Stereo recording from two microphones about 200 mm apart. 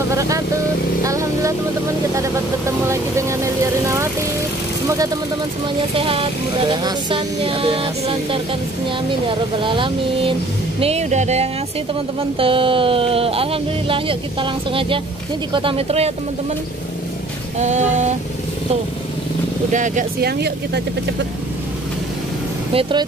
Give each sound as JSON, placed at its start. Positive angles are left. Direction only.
{"t": 0.1, "sound": "speech", "side_deg": -15}
{"t": 1.0, "sound": "vehicle", "side_deg": -15}
{"t": 2.9, "sound": "vehicle", "side_deg": -15}
{"t": 3.8, "sound": "music", "side_deg": -15}
{"t": 4.8, "sound": "speech", "side_deg": -15}
{"t": 9.6, "sound": "speech", "side_deg": -25}
{"t": 17.6, "sound": "speech", "side_deg": -35}
{"t": 19.7, "sound": "speech", "side_deg": -40}
{"t": 22.8, "sound": "speech", "side_deg": -25}